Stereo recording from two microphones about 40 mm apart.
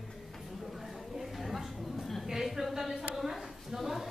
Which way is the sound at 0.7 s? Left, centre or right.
Centre.